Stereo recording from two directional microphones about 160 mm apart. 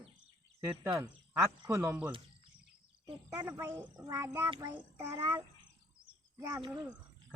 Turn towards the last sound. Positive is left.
turn(degrees=-25)  # may be behind; listen again after turning